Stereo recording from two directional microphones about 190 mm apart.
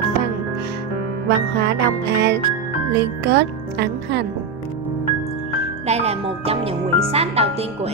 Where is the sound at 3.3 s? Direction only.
65° right (ahead or behind).